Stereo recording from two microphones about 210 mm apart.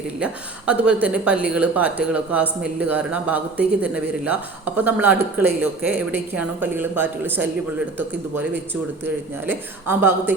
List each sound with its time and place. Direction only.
0.2 s speech: 5° right (ahead or behind)
9.0 s speech: 10° right (ahead or behind)